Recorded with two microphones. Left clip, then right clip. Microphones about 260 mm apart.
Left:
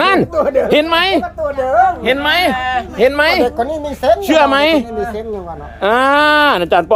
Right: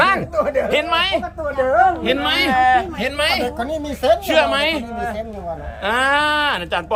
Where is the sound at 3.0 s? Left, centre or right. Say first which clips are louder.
Left 8 dB; centre.